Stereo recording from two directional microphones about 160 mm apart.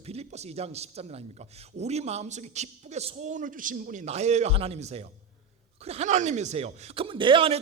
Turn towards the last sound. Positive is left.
turn(degrees=-35)  # may be behind; listen again after turning